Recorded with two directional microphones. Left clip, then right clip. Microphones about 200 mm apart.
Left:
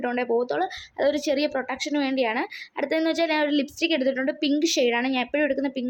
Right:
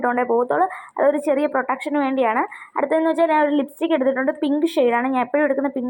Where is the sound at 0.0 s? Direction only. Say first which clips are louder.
Right 5 dB; 15° left (ahead or behind).